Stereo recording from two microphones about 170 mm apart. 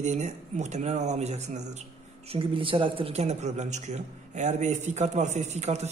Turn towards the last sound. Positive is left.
turn(degrees=-40)  # may be behind; listen again after turning